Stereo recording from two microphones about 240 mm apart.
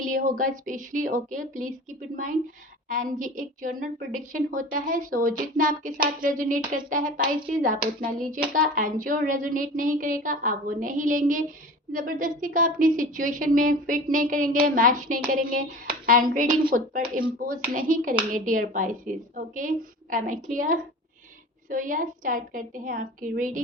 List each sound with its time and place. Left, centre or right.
0.0 s a woman's voice: right